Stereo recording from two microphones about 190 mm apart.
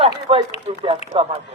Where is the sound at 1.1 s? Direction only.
30° right (ahead or behind).